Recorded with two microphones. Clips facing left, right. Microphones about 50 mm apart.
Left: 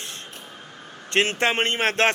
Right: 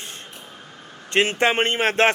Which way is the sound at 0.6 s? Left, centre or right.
Centre.